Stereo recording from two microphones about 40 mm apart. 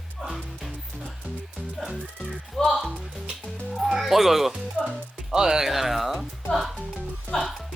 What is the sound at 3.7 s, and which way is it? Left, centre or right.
Speech, centre.